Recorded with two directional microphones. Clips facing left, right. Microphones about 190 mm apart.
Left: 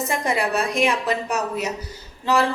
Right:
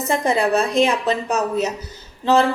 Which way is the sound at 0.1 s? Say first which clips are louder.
Right 7 dB; 25° right (ahead or behind).